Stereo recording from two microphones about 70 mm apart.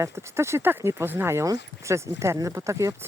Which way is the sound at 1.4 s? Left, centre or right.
Right.